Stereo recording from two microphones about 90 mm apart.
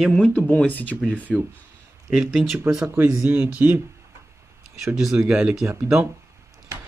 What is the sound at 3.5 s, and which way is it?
Speech, 15° right (ahead or behind).